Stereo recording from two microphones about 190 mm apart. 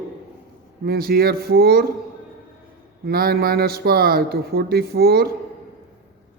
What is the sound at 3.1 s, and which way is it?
Speech, 55° right (ahead or behind).